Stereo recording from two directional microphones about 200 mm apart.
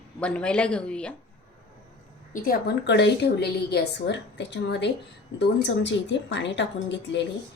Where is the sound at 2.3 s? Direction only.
50° left (ahead or behind).